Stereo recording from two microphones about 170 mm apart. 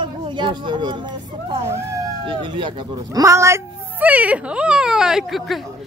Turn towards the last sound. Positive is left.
turn(degrees=0)  # may be behind; listen again after turning